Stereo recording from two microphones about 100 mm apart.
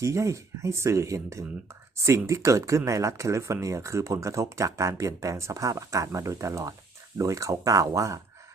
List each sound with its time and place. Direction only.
0.0 s speech: 30° right (ahead or behind)